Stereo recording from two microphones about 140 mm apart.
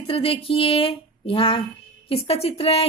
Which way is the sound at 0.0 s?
40° left (ahead or behind).